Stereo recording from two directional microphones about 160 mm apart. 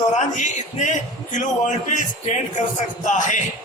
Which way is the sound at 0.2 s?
50° left (ahead or behind).